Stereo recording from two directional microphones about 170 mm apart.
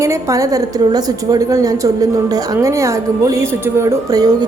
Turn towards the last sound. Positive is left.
turn(degrees=-20)  # may be behind; listen again after turning